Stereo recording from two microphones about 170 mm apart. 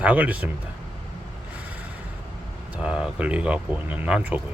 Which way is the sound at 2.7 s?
5° right (ahead or behind).